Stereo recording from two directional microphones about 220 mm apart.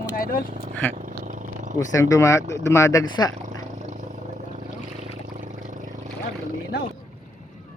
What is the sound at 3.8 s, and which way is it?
Vehicle, 35° right (ahead or behind).